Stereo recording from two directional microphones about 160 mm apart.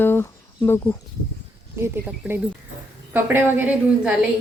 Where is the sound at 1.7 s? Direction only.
15° right (ahead or behind).